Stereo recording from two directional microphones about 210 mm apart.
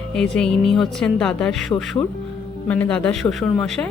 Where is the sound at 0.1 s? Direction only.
5° left (ahead or behind).